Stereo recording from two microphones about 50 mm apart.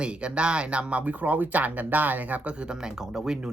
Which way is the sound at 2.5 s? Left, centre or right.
Centre.